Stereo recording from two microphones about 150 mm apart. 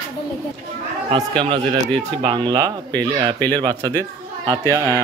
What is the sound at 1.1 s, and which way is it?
Speech, 35° right (ahead or behind).